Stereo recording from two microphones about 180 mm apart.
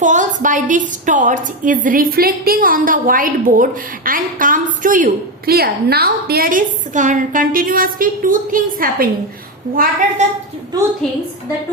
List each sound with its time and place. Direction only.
0.0 s a woman's voice: 45° right (ahead or behind)
10.2 s a woman's voice: 40° right (ahead or behind)